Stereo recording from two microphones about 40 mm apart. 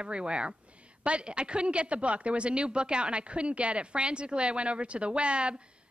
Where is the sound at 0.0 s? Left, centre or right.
Right.